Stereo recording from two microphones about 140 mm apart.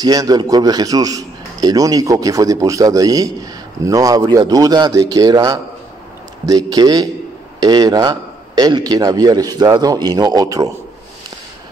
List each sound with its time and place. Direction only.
0.0 s a man's voice: 25° right (ahead or behind)